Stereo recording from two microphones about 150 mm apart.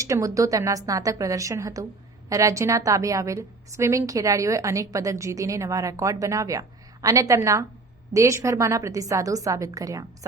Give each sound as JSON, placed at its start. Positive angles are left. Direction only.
{"t": 0.0, "sound": "a woman's voice", "side_deg": -20}